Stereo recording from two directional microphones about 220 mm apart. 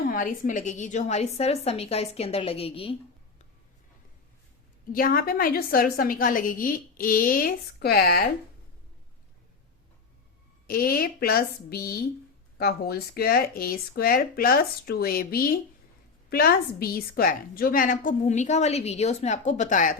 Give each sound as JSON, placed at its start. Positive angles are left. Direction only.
{"t": 0.1, "sound": "a woman's voice", "side_deg": 40}
{"t": 4.9, "sound": "a woman's voice", "side_deg": 40}
{"t": 10.7, "sound": "a woman's voice", "side_deg": 40}